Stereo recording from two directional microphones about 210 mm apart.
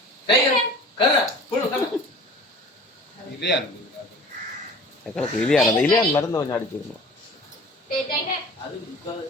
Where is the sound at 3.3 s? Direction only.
55° left (ahead or behind).